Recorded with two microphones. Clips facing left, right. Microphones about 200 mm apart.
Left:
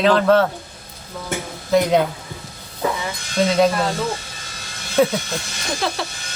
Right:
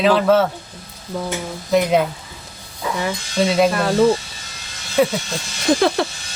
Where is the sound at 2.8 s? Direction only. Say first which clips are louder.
Left 3 dB; 50° left (ahead or behind).